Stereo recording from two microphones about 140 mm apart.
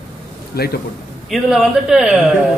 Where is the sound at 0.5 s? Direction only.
90° left.